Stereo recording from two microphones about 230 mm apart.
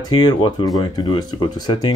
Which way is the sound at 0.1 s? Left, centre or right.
Centre.